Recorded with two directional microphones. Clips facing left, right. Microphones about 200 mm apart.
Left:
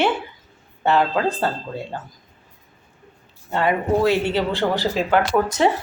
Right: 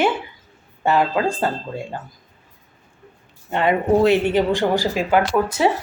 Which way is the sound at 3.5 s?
20° right (ahead or behind).